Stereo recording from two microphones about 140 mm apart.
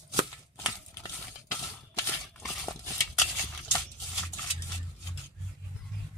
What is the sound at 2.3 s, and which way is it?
Horse, centre (ahead or behind).